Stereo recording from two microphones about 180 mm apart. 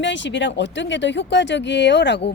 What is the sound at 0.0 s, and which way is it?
Speech, 85° left.